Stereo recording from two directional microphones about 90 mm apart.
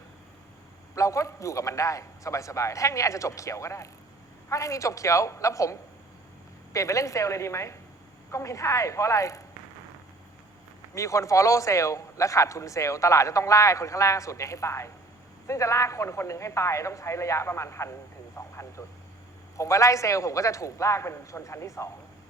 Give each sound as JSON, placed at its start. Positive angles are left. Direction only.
{"t": 0.9, "sound": "speech", "side_deg": 35}
{"t": 6.7, "sound": "speech", "side_deg": 35}
{"t": 10.9, "sound": "speech", "side_deg": 35}